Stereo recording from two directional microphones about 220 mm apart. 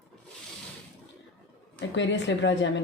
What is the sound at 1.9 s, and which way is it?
Speech, 55° left (ahead or behind).